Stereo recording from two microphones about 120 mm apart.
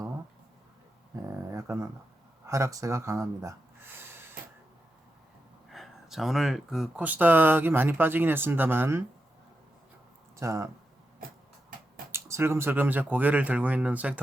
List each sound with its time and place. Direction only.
1.1 s a sound: 25° right (ahead or behind)
2.5 s speech: 25° right (ahead or behind)
5.7 s speech: centre (ahead or behind)
7.0 s speech: 15° right (ahead or behind)
10.3 s speech: 25° right (ahead or behind)
12.1 s speech: 20° right (ahead or behind)